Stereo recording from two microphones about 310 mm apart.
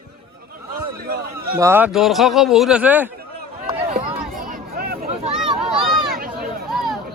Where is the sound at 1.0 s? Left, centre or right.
Right.